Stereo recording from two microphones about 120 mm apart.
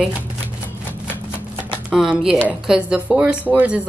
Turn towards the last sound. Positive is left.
turn(degrees=-15)  # may be behind; listen again after turning